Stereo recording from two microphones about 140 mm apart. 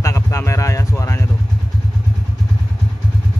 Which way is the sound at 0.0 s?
20° left (ahead or behind).